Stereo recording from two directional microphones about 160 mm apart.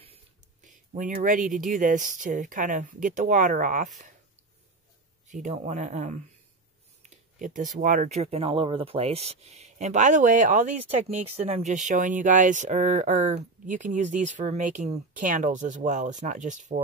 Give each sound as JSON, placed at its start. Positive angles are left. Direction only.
{"t": 0.6, "sound": "speech", "side_deg": -55}
{"t": 5.3, "sound": "speech", "side_deg": -50}